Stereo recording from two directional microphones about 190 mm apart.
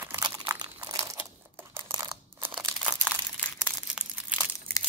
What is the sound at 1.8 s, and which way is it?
Crunch, 20° right (ahead or behind).